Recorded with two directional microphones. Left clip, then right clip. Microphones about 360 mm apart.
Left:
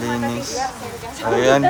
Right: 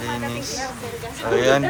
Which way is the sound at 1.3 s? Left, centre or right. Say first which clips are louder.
Left 2 dB; centre.